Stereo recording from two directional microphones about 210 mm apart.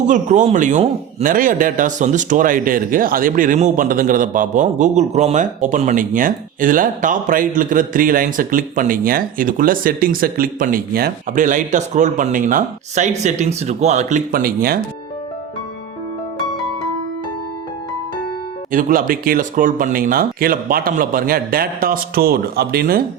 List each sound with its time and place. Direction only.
0.1 s a man's voice: 35° right (ahead or behind)
18.7 s speech: 40° right (ahead or behind)